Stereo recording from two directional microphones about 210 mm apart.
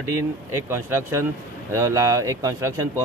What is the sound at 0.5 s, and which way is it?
A man's voice, 10° right (ahead or behind).